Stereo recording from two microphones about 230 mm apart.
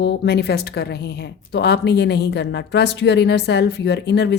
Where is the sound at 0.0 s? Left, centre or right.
Left.